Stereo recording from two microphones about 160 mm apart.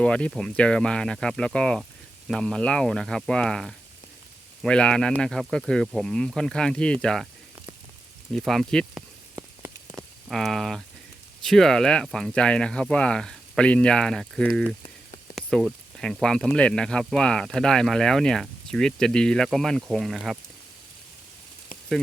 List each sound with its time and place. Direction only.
0.0 s speech: 5° left (ahead or behind)
8.3 s speech: centre (ahead or behind)
9.3 s rain on surface: 15° right (ahead or behind)
10.2 s speech: centre (ahead or behind)